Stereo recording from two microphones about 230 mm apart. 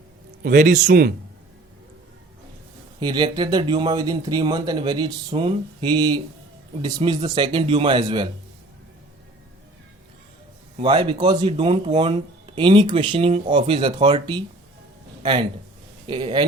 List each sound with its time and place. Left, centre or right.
0.4 s a man's voice: right
3.0 s speech: centre
10.8 s speech: right